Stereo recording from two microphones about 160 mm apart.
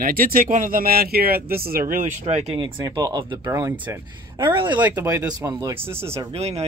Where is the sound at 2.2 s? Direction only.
35° right (ahead or behind).